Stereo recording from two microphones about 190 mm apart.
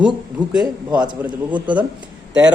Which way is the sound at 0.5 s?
5° right (ahead or behind).